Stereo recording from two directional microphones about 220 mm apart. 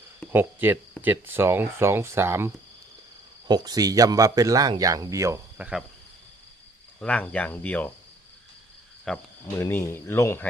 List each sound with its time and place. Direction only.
0.3 s speech: 10° right (ahead or behind)
3.5 s speech: 15° right (ahead or behind)
7.0 s speech: 5° left (ahead or behind)
9.0 s speech: 10° left (ahead or behind)